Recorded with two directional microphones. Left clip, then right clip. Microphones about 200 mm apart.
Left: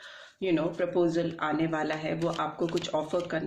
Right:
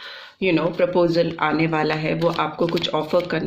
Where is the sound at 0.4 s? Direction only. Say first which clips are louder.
Right 9 dB; 40° right (ahead or behind).